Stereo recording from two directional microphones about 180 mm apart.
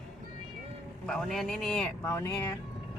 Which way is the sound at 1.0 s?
Centre (ahead or behind).